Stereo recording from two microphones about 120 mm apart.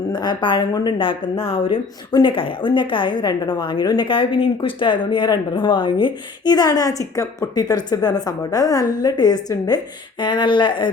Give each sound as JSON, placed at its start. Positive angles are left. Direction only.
{"t": 0.1, "sound": "a woman's voice", "side_deg": 40}